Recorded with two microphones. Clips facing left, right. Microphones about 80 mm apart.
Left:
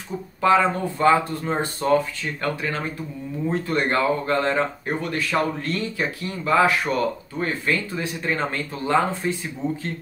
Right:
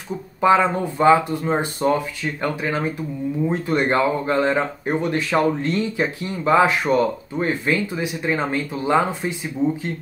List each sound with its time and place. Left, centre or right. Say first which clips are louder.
0.4 s speech: right 2 dB; centre